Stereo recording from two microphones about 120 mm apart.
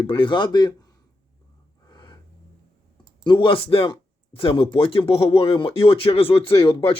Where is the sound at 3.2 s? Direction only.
45° left (ahead or behind).